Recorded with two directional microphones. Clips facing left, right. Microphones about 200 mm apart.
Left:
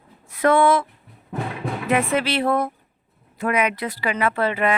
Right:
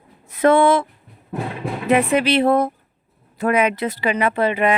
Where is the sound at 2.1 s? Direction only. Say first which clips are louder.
Right 5 dB; 20° right (ahead or behind).